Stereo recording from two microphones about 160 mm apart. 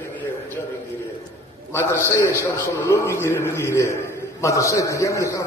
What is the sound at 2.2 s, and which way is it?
A man's voice, 15° left (ahead or behind).